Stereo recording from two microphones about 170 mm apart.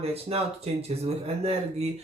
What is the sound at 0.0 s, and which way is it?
Speech, 35° right (ahead or behind).